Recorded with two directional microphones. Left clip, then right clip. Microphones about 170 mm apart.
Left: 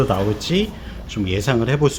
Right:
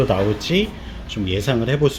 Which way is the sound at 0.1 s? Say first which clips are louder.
Right 1 dB; 5° left (ahead or behind).